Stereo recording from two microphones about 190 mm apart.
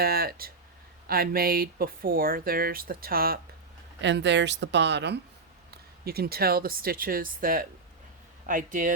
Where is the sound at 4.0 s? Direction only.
70° right (ahead or behind); by 8.9 s 45° right (ahead or behind).